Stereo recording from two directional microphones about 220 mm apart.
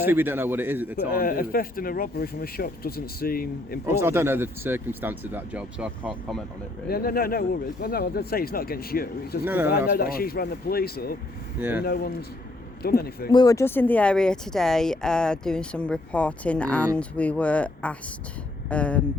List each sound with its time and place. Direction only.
0.0 s speech: 10° right (ahead or behind)
0.9 s speech: 40° left (ahead or behind)
4.0 s speech: 10° right (ahead or behind)
6.8 s speech: 40° left (ahead or behind)
9.4 s speech: 10° right (ahead or behind)
9.6 s speech: 45° left (ahead or behind)
13.3 s speech: 15° left (ahead or behind)